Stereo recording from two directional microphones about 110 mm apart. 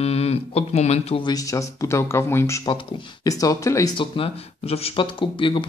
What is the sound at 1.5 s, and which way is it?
Speech, 25° left (ahead or behind).